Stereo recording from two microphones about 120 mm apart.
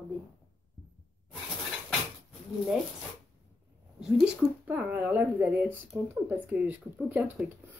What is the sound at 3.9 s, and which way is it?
Speech, 5° right (ahead or behind).